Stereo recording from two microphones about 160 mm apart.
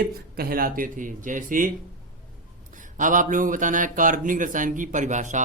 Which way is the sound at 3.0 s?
55° right (ahead or behind).